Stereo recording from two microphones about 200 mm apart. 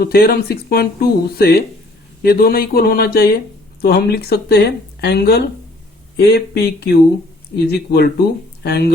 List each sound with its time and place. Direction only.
0.0 s speech: 50° left (ahead or behind)